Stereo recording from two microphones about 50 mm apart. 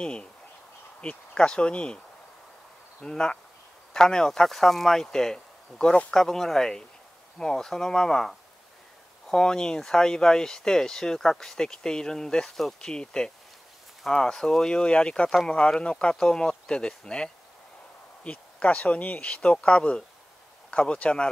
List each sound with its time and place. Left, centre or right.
0.0 s speech: centre
1.3 s speech: centre
3.0 s speech: centre
6.1 s speech: centre